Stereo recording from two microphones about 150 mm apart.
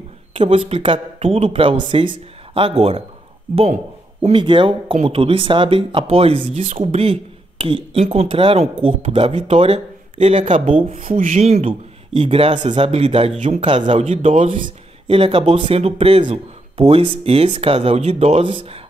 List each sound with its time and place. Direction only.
0.3 s speech: 40° right (ahead or behind)
4.2 s speech: 35° right (ahead or behind)